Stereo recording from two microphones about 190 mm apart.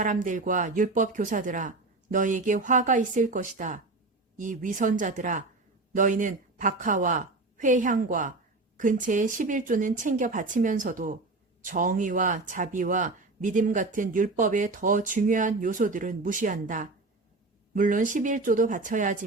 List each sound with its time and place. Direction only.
0.0 s a woman's voice: 45° right (ahead or behind)